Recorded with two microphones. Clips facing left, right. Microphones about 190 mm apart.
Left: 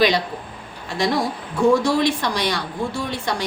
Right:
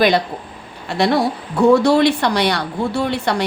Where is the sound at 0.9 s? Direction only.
65° right (ahead or behind).